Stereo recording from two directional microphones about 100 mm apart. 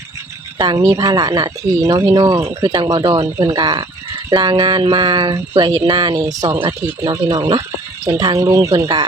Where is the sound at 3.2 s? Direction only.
25° right (ahead or behind).